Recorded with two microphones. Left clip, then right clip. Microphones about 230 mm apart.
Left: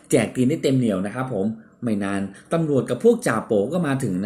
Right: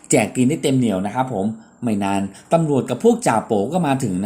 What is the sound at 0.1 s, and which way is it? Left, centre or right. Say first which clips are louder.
A woman's voice: right 3 dB; right.